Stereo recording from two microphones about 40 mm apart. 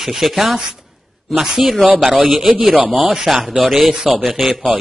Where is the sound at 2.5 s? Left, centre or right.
Right.